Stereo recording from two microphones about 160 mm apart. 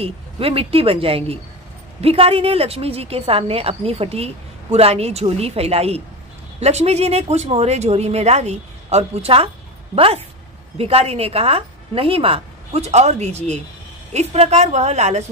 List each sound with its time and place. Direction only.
0.0 s a woman's voice: 35° right (ahead or behind)